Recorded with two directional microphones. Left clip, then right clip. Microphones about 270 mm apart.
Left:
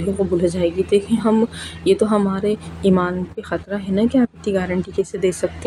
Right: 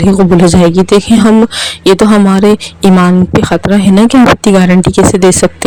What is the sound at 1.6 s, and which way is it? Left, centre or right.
Speech, right.